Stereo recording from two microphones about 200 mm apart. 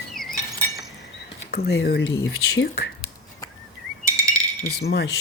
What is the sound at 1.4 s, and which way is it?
Speech, 50° left (ahead or behind).